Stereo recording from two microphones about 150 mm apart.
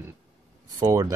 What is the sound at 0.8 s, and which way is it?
Speech, 20° right (ahead or behind).